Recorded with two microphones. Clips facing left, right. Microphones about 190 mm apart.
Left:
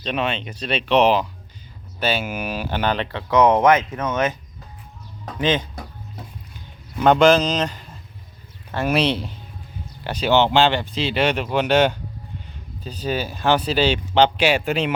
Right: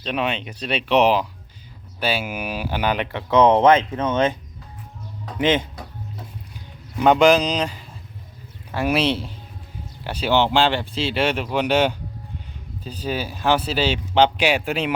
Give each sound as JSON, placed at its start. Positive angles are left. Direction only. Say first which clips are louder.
{"t": 0.0, "sound": "speech", "louder": "even", "side_deg": -5}
{"t": 5.4, "sound": "speech", "louder": "right 1 dB", "side_deg": -25}
{"t": 7.0, "sound": "speech", "louder": "even", "side_deg": -10}